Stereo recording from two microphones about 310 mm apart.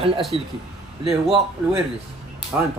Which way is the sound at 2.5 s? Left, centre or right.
Centre.